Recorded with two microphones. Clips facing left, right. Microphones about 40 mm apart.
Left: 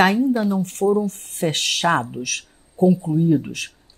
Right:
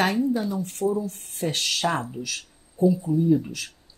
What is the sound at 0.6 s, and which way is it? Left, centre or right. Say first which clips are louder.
Speech: left 6 dB; left.